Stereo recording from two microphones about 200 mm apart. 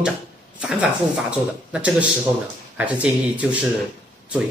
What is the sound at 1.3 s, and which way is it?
Speech, 5° right (ahead or behind).